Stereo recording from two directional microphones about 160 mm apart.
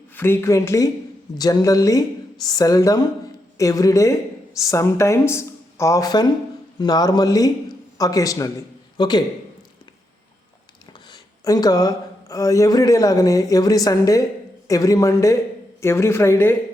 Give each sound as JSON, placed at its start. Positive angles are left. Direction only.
{"t": 0.2, "sound": "a man's voice", "side_deg": 15}
{"t": 11.1, "sound": "speech", "side_deg": 25}